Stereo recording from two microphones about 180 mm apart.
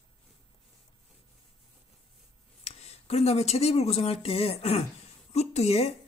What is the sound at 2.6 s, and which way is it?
Speech, 35° left (ahead or behind).